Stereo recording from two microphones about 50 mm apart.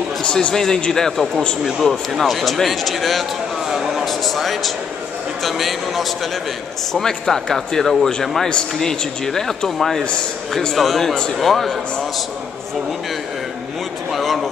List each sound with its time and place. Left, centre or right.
0.2 s a man's voice: centre
14.1 s speech: centre